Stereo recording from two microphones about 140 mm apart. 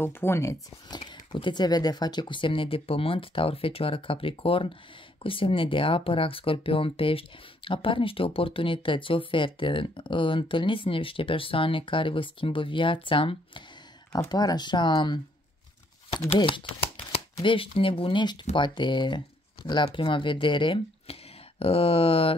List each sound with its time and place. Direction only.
0.0 s speech: 15° left (ahead or behind)
0.9 s speech: 35° left (ahead or behind)
14.1 s speech: 25° left (ahead or behind)
16.3 s speech: 35° left (ahead or behind)